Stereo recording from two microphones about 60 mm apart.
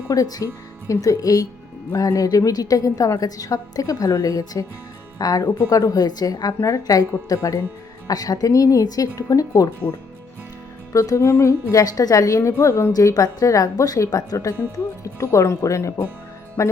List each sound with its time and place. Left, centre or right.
0.1 s speech: left
0.9 s a woman's voice: left
8.0 s speech: left
10.9 s a woman's voice: left
11.2 s speech: left
11.7 s a woman's voice: left
12.4 s a woman's voice: left
14.6 s speech: left